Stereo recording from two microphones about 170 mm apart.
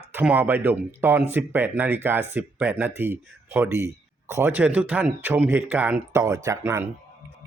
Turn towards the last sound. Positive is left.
turn(degrees=-15)  # may be behind; listen again after turning